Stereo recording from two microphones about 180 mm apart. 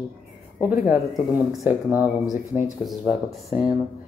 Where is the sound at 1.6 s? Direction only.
10° right (ahead or behind).